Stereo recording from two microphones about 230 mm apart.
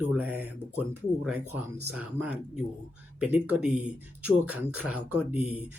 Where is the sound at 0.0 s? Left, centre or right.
Centre.